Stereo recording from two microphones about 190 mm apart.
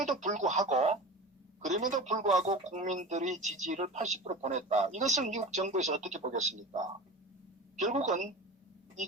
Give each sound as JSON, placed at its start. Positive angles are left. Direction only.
{"t": 0.0, "sound": "speech", "side_deg": -40}
{"t": 7.8, "sound": "speech", "side_deg": -40}